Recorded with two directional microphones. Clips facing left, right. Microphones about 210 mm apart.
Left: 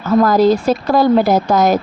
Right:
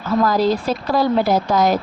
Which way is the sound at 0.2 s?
45° left (ahead or behind).